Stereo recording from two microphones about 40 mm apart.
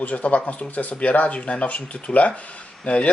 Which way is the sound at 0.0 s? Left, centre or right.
Left.